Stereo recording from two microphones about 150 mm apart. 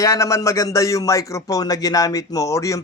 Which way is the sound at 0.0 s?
20° left (ahead or behind).